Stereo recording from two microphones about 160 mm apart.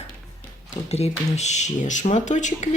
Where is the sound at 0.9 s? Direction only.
45° left (ahead or behind).